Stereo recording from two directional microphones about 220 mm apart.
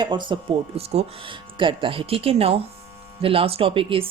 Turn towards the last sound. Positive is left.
turn(degrees=-25)  # may be behind; listen again after turning